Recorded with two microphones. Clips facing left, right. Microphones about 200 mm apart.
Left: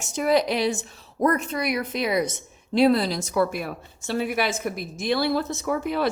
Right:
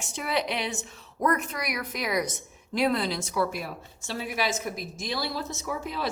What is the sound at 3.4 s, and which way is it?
A woman's voice, 55° left (ahead or behind).